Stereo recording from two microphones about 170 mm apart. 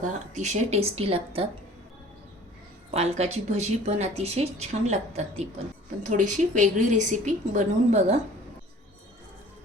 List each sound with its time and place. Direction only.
0.0 s speech: 45° right (ahead or behind)
2.9 s a woman's voice: 40° right (ahead or behind)